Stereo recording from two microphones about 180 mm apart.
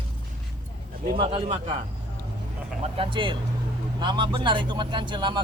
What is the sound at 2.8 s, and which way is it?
Speech, 30° right (ahead or behind).